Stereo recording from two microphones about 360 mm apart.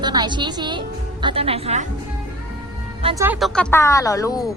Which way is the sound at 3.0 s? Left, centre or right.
Centre.